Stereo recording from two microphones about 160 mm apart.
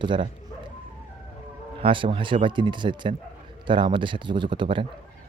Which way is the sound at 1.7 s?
35° right (ahead or behind).